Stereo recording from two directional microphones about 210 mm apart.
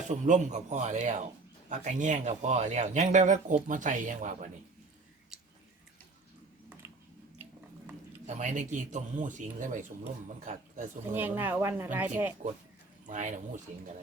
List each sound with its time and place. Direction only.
0.1 s speech: 35° right (ahead or behind)
8.3 s speech: 35° right (ahead or behind)
11.1 s speech: 10° right (ahead or behind)
13.1 s speech: 35° right (ahead or behind)